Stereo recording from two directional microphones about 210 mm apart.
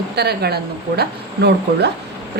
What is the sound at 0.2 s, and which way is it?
A woman's voice, 50° right (ahead or behind).